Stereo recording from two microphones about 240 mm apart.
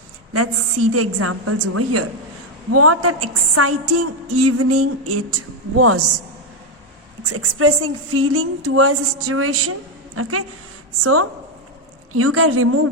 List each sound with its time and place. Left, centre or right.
0.3 s a woman's voice: right
7.3 s a woman's voice: right